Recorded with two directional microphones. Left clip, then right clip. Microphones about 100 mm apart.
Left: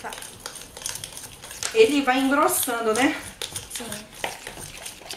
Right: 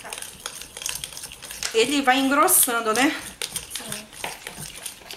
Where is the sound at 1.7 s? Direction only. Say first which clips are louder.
Left 1 dB; 25° right (ahead or behind).